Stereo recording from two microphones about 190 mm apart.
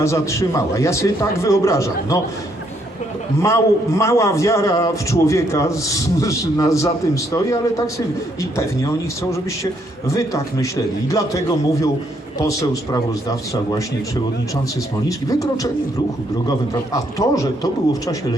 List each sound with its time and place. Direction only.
0.0 s a man's voice: 15° left (ahead or behind)
3.4 s a man's voice: 15° left (ahead or behind)
15.3 s a man's voice: 15° left (ahead or behind)